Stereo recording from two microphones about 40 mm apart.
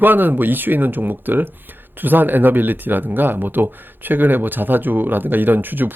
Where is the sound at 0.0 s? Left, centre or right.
Right.